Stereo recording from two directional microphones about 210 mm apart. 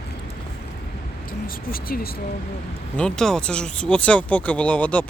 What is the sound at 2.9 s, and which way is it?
Speech, 5° left (ahead or behind).